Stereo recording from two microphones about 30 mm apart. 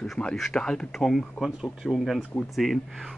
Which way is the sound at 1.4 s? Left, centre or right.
Centre.